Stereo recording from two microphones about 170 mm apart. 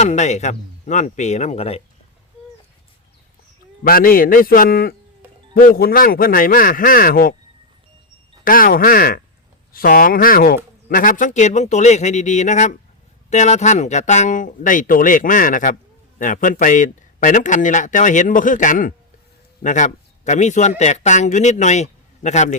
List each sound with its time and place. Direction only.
0.0 s speech: 45° left (ahead or behind)
3.8 s speech: 60° left (ahead or behind)
5.2 s music: 10° right (ahead or behind)
5.5 s speech: 60° left (ahead or behind)
8.4 s speech: 55° left (ahead or behind)